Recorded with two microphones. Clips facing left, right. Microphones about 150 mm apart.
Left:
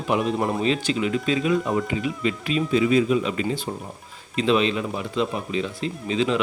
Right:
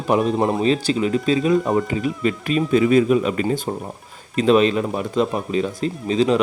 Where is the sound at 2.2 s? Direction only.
45° right (ahead or behind).